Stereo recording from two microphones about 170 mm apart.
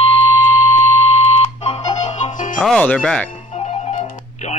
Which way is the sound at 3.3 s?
35° left (ahead or behind).